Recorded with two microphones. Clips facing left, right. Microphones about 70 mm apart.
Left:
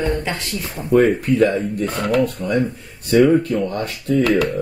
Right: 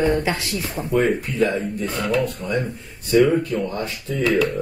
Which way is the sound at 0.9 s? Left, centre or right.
Left.